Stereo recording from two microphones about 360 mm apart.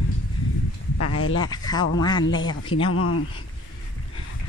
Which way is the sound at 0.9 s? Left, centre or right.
Left.